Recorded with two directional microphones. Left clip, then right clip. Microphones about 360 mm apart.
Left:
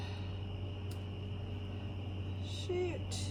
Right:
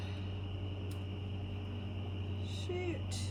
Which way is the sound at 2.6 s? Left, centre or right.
Centre.